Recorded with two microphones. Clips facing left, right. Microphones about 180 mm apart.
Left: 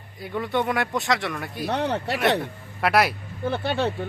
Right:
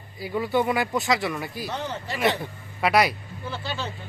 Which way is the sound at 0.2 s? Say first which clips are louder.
Right 2 dB; 5° right (ahead or behind).